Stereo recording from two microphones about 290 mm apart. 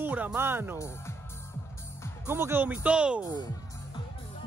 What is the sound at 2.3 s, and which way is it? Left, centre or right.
Speech, centre.